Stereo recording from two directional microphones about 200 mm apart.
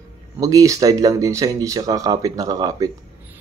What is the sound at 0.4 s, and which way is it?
Speech, 15° right (ahead or behind).